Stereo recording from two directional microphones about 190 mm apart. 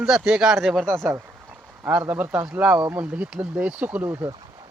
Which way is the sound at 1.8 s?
10° right (ahead or behind).